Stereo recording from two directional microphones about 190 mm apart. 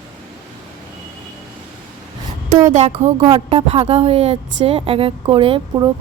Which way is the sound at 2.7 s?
35° right (ahead or behind).